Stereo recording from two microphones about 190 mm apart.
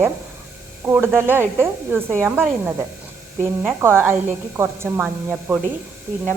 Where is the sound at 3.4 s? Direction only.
10° right (ahead or behind).